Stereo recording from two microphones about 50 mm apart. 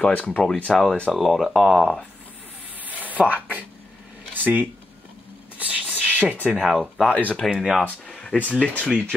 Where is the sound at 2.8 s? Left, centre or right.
Right.